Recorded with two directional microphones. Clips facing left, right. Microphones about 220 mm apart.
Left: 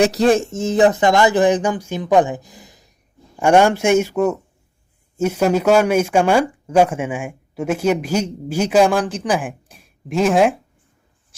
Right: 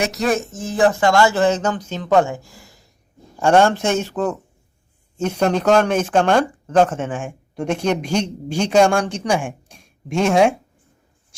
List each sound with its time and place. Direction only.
0.0 s speech: 30° left (ahead or behind); by 10.5 s centre (ahead or behind)